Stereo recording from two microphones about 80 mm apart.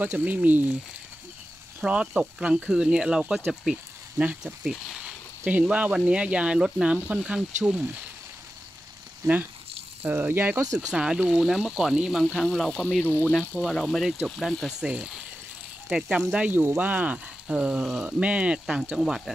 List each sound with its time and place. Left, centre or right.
0.0 s speech: centre
1.8 s speech: centre
4.2 s speech: right
5.4 s speech: centre
9.2 s speech: right
10.6 s speech: right
10.9 s speech: centre
12.4 s speech: centre
13.0 s speech: left
13.6 s speech: centre
16.3 s speech: centre